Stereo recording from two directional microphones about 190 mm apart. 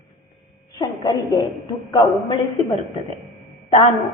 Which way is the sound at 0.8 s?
20° left (ahead or behind).